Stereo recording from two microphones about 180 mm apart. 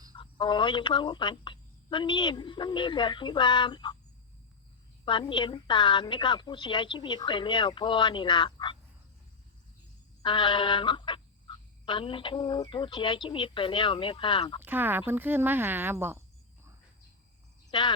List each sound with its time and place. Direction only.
0.2 s speech: 25° left (ahead or behind)
5.0 s speech: 25° left (ahead or behind)
10.2 s speech: 25° left (ahead or behind)
14.6 s speech: 10° right (ahead or behind)
17.7 s speech: 25° left (ahead or behind)